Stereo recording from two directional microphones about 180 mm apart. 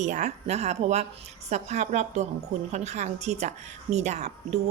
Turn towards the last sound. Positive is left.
turn(degrees=-40)  # may be behind; listen again after turning